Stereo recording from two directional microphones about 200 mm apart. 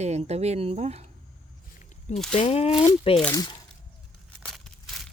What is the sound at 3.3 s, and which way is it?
Speech, 20° left (ahead or behind).